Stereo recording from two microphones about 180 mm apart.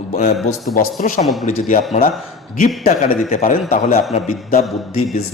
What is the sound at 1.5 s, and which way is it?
Speech, 45° left (ahead or behind).